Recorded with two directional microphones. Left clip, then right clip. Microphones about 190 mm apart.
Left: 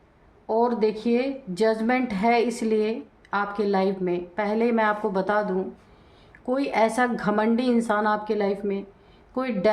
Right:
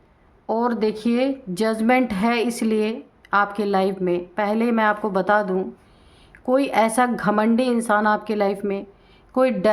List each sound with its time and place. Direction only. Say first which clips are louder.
0.4 s a woman's voice: even; 40° right (ahead or behind)